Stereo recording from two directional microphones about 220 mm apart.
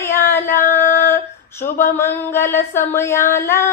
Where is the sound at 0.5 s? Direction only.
35° left (ahead or behind).